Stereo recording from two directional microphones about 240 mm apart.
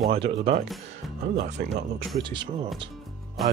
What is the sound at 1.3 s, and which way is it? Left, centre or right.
Speech, right.